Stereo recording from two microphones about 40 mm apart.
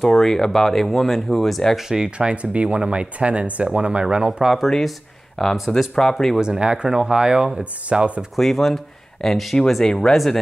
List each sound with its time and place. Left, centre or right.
0.0 s speech: centre
1.8 s speech: centre
2.0 s speech: right
4.6 s speech: centre
6.4 s speech: centre
8.4 s speech: centre